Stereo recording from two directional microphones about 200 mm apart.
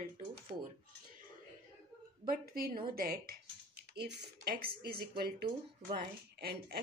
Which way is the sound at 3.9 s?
55° right (ahead or behind).